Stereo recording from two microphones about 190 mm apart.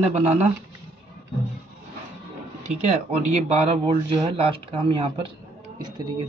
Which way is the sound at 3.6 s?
30° right (ahead or behind).